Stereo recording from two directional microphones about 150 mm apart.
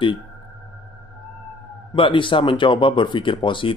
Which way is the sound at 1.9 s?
35° left (ahead or behind).